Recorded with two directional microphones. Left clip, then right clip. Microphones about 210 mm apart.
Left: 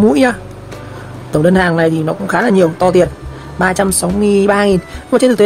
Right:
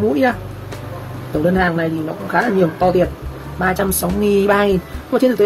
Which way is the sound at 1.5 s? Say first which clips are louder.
Left 6 dB; 40° left (ahead or behind).